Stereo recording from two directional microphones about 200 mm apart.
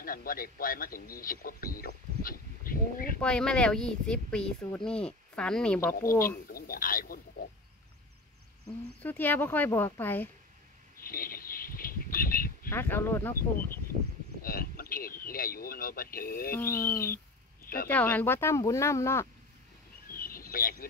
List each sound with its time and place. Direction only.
0.0 s a man's voice: 45° left (ahead or behind)
3.2 s speech: 5° left (ahead or behind)
6.2 s a sound: 45° left (ahead or behind)
9.0 s speech: 10° left (ahead or behind)
11.0 s bird: 45° left (ahead or behind)
12.6 s speech: 10° left (ahead or behind)
14.4 s a sound: 45° left (ahead or behind)
16.5 s speech: 10° left (ahead or behind)
20.1 s a sound: 45° left (ahead or behind)